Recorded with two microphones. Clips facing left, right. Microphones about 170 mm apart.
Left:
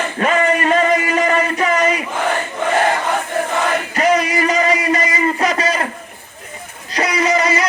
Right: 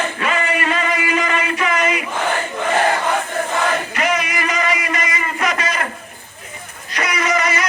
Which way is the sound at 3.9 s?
35° left (ahead or behind).